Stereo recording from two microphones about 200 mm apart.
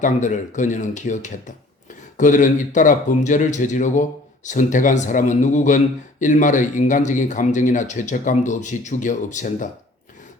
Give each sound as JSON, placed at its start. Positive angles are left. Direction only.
{"t": 0.0, "sound": "speech", "side_deg": 40}